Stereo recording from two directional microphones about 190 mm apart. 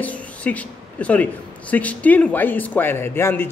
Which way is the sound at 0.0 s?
10° left (ahead or behind).